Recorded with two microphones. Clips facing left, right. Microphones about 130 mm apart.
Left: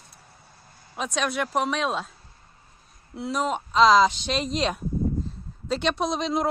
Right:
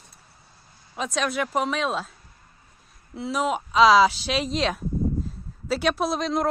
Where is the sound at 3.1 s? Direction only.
Centre (ahead or behind).